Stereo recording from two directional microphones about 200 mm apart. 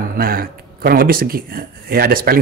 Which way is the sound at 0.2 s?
50° right (ahead or behind).